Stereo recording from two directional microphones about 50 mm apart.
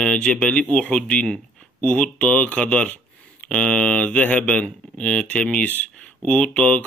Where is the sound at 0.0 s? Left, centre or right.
Left.